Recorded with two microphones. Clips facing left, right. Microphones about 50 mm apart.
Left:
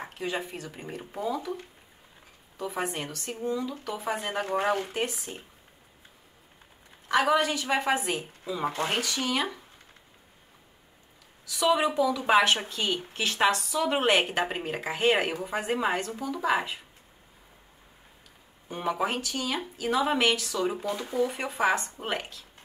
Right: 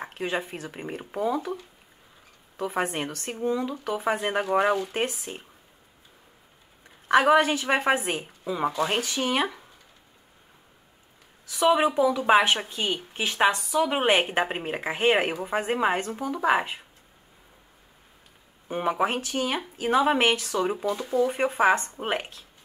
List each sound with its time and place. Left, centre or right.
0.5 s speech: right
2.5 s speech: right
5.3 s speech: right
7.1 s speech: right
11.4 s speech: right
12.3 s speech: centre; by 16.8 s right
18.7 s speech: right